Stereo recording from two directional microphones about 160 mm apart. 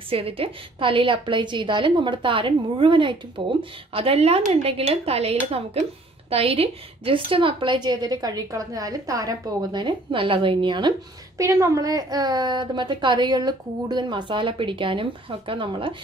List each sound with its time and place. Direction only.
0.1 s a woman's voice: 35° right (ahead or behind)